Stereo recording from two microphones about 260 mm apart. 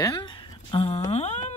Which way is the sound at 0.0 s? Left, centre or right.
Centre.